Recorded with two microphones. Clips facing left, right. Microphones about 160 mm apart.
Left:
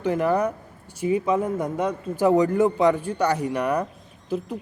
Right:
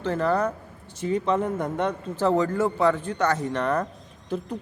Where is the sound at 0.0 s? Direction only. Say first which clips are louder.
Left 2 dB; 15° left (ahead or behind).